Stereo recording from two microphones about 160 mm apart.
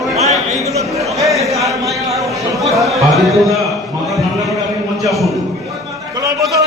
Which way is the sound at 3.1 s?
Centre (ahead or behind).